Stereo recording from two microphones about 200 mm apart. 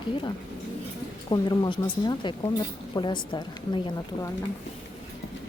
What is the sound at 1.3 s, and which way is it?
Speech, 20° left (ahead or behind).